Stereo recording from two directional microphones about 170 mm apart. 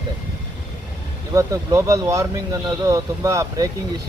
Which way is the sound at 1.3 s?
20° right (ahead or behind).